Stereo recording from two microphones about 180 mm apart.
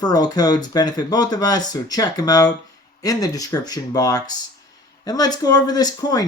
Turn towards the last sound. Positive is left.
turn(degrees=20)  # may be behind; listen again after turning